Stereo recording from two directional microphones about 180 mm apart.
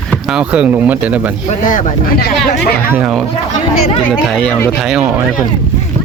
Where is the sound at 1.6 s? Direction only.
55° left (ahead or behind).